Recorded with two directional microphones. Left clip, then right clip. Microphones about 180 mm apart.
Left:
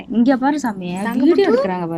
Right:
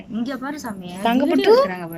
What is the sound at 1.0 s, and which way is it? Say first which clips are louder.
Speech: left 3 dB; 5° right (ahead or behind).